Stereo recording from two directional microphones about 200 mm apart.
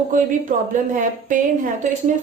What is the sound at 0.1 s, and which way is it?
Speech, 40° right (ahead or behind).